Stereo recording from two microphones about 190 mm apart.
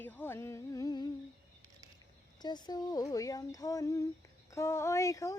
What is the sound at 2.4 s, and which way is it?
Speech, 20° left (ahead or behind).